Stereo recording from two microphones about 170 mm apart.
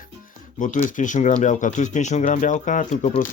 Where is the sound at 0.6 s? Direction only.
50° left (ahead or behind).